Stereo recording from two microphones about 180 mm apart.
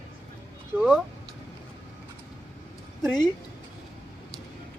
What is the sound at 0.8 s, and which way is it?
Speech, centre (ahead or behind).